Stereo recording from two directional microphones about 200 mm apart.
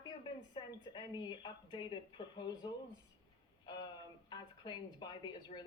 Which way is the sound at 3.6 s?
20° left (ahead or behind).